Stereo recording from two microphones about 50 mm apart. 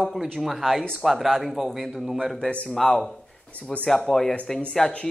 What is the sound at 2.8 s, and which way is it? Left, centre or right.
Speech, centre.